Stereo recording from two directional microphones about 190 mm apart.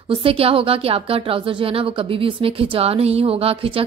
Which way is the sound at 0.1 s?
30° right (ahead or behind).